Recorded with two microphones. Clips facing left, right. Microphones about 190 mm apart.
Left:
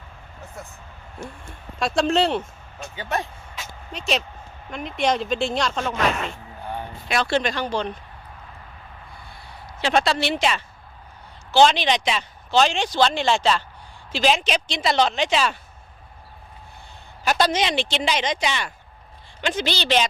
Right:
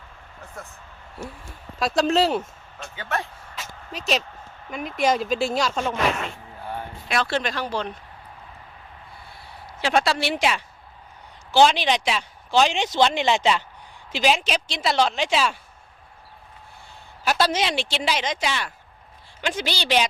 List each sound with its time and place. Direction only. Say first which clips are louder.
1.2 s speech: even; 5° right (ahead or behind)
2.9 s speech: left 2 dB; 15° left (ahead or behind)
3.5 s a sound: even; centre (ahead or behind)
4.7 s speech: right 1 dB; centre (ahead or behind)
9.8 s speech: left 1 dB; 5° right (ahead or behind)
17.2 s speech: left 1 dB; 5° right (ahead or behind)